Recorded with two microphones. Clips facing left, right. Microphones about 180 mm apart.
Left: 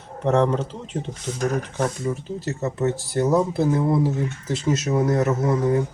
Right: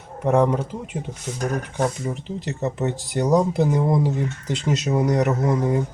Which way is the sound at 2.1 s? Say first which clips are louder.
Left 2 dB; 25° right (ahead or behind).